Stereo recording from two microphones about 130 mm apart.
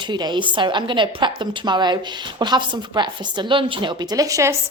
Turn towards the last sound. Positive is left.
turn(degrees=-25)  # may be behind; listen again after turning